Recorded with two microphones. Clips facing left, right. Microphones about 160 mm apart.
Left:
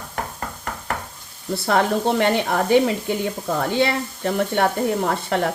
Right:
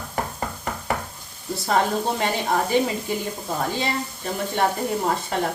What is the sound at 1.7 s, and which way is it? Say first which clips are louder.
Speech: left 3 dB; 65° left (ahead or behind).